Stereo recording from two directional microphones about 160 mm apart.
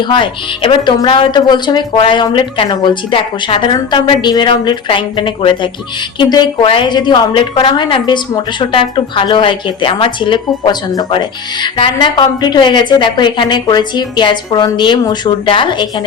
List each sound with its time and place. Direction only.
0.1 s a woman's voice: 30° left (ahead or behind)